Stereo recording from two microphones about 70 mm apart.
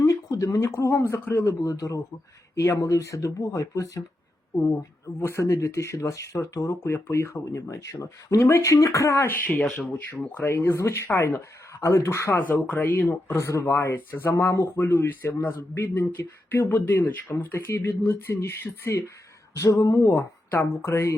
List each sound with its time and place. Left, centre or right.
0.0 s a sound: left
0.6 s speech: left
1.7 s speech: left
4.8 s speech: left
9.5 s speech: centre
10.2 s speech: left
12.4 s speech: left
14.3 s speech: left
20.1 s speech: left